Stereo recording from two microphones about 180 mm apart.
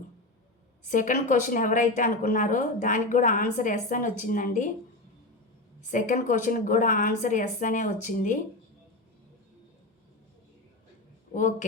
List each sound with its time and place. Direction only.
0.9 s a woman's voice: 45° left (ahead or behind)
5.9 s a woman's voice: 45° left (ahead or behind)